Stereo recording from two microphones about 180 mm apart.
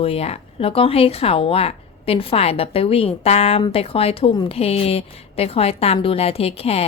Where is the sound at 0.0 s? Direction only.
35° left (ahead or behind).